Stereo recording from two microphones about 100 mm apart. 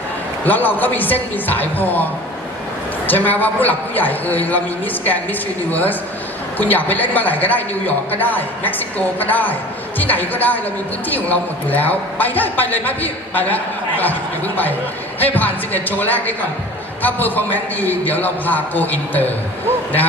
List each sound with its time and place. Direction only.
0.4 s a man's voice: 15° left (ahead or behind)
3.1 s a man's voice: 15° left (ahead or behind)